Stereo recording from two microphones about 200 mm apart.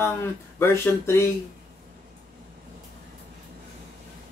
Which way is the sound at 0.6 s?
10° left (ahead or behind).